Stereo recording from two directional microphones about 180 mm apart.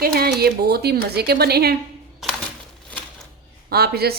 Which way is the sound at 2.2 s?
Centre (ahead or behind).